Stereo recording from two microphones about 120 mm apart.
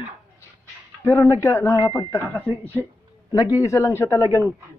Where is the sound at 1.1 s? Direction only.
25° left (ahead or behind).